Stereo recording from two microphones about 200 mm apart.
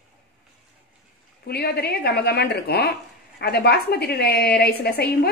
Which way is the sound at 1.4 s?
55° left (ahead or behind).